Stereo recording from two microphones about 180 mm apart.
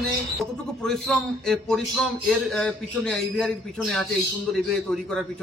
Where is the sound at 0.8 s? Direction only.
Centre (ahead or behind).